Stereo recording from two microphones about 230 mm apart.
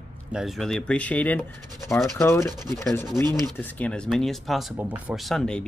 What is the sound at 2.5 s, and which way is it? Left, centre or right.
Rub, centre.